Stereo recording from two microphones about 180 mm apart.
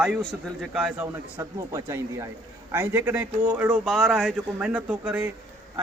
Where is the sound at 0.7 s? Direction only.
5° right (ahead or behind).